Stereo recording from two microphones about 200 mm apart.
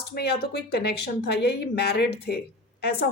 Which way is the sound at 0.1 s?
55° left (ahead or behind).